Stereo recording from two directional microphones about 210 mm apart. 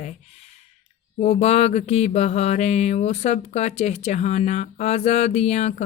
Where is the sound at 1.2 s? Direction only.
30° left (ahead or behind).